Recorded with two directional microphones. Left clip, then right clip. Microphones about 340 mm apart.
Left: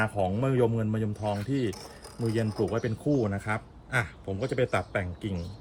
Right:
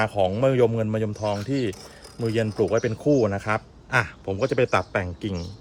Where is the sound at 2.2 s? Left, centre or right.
Centre.